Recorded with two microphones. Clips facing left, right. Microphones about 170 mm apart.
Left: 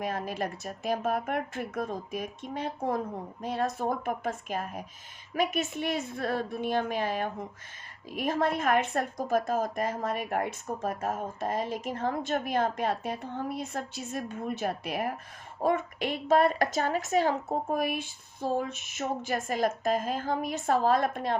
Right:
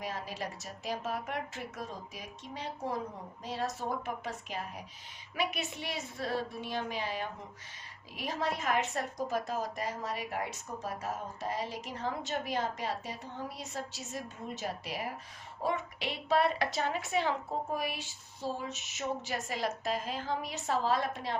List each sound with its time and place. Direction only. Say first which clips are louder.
0.0 s speech: left 7 dB; 55° left (ahead or behind)